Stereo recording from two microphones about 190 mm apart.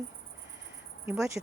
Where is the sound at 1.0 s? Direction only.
15° right (ahead or behind).